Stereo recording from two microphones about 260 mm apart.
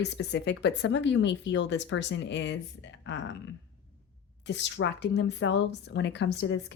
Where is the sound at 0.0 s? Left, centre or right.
Left.